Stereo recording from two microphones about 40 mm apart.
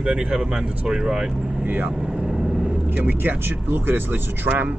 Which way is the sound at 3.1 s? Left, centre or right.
Right.